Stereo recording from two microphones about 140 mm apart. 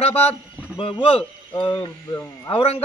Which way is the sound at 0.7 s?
40° left (ahead or behind).